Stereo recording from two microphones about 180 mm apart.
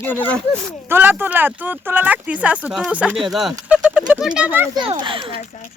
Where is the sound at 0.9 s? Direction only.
10° right (ahead or behind).